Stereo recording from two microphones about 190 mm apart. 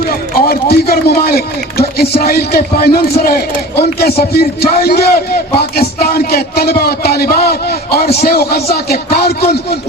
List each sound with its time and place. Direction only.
0.3 s a man's voice: 50° left (ahead or behind)